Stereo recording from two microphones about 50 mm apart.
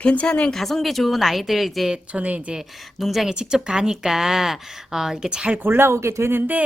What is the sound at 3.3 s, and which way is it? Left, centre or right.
A woman's voice, centre.